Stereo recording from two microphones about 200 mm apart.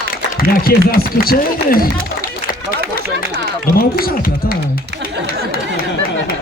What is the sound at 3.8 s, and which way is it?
Run, 45° left (ahead or behind).